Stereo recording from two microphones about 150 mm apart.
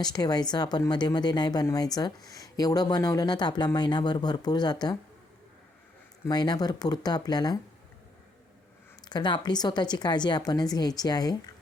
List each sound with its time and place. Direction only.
0.0 s a woman's voice: 25° left (ahead or behind)
6.2 s a woman's voice: 25° left (ahead or behind)
9.0 s a woman's voice: 30° left (ahead or behind)